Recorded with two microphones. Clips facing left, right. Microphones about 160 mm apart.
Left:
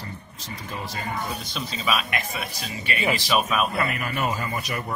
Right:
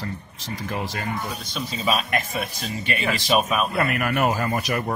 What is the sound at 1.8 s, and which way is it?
Speech, 40° right (ahead or behind).